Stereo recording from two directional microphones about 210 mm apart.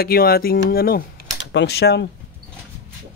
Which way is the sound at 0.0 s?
45° left (ahead or behind).